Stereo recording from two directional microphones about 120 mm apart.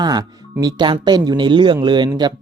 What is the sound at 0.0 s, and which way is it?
Speech, 35° right (ahead or behind).